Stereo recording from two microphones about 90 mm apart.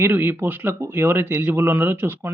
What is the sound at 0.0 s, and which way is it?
Speech, 25° right (ahead or behind).